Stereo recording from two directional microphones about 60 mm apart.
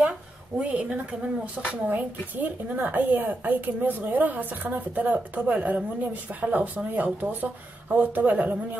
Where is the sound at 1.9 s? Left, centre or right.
Right.